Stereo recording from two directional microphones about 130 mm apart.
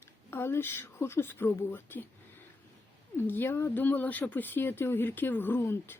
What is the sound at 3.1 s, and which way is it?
Speech, 15° left (ahead or behind).